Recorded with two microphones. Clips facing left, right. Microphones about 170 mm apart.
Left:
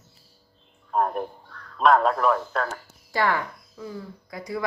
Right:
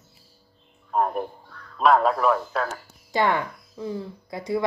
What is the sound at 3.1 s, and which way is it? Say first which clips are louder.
Speech: right 2 dB; 20° right (ahead or behind).